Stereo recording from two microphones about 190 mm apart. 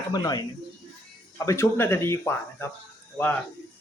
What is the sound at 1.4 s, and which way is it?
A man's voice, 15° left (ahead or behind).